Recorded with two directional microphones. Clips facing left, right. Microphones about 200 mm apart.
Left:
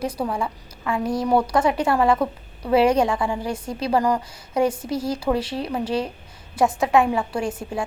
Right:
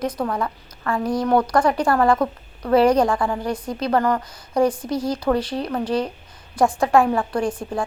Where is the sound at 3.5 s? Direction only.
25° left (ahead or behind).